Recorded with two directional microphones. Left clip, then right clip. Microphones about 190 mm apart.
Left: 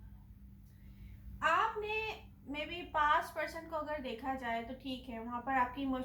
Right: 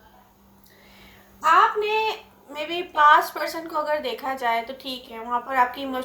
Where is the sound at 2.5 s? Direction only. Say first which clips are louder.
Right 10 dB; 35° right (ahead or behind).